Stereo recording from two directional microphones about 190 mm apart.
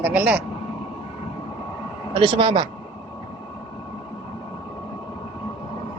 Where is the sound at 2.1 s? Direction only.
25° right (ahead or behind).